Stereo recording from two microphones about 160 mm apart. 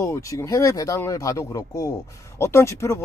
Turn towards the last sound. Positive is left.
turn(degrees=15)  # may be behind; listen again after turning